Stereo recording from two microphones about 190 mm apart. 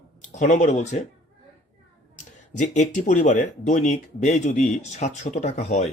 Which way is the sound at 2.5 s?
40° left (ahead or behind).